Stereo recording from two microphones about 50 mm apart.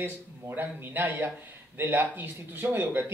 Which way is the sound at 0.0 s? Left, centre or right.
Right.